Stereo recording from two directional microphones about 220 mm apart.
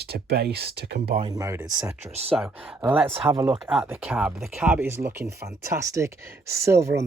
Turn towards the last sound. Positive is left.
turn(degrees=-15)  # may be behind; listen again after turning